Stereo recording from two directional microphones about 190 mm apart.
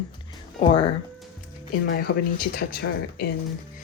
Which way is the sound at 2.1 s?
70° left (ahead or behind).